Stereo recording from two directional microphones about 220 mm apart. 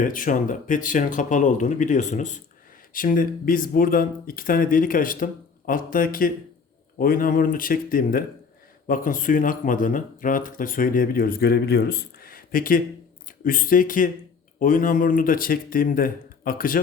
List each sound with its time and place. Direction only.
0.0 s speech: 40° left (ahead or behind)